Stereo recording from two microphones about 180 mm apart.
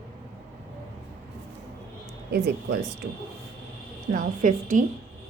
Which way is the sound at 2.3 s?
65° right (ahead or behind).